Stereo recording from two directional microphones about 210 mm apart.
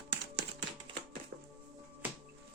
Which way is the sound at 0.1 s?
55° right (ahead or behind).